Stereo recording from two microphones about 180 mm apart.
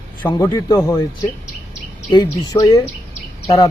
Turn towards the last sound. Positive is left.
turn(degrees=20)  # may be behind; listen again after turning